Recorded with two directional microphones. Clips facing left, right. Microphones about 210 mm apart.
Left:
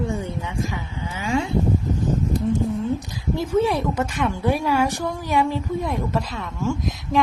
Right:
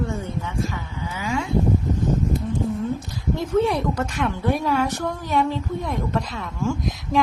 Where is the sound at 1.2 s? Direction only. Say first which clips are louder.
Left 3 dB; 30° left (ahead or behind).